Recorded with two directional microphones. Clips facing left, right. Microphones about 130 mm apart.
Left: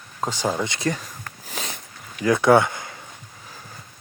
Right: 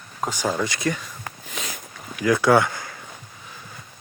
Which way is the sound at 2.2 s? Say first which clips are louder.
Left 1 dB; 25° left (ahead or behind).